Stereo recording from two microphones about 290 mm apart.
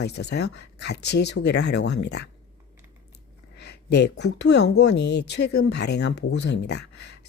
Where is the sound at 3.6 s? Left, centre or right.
Left.